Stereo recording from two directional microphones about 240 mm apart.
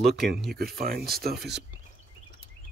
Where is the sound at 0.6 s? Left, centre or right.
Right.